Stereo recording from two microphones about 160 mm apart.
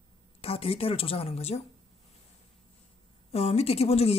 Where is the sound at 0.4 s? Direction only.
40° left (ahead or behind).